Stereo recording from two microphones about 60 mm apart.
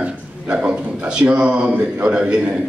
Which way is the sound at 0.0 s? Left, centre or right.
Right.